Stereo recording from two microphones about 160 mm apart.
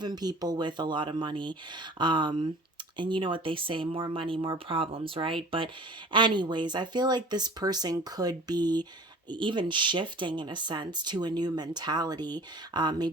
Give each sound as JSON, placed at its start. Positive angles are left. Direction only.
{"t": 0.0, "sound": "speech", "side_deg": -25}